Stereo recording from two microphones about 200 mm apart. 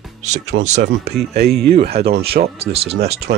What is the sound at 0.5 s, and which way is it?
Speech, 60° right (ahead or behind).